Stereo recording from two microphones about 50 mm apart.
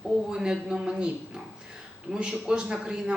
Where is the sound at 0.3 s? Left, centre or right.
Centre.